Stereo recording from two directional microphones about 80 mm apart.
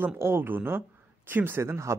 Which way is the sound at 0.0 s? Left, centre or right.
Right.